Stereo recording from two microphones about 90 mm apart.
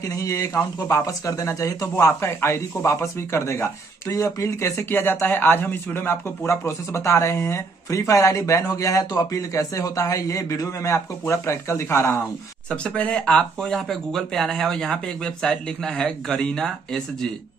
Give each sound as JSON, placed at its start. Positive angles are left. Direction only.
{"t": 0.0, "sound": "a man's voice", "side_deg": 35}
{"t": 12.6, "sound": "speech", "side_deg": 10}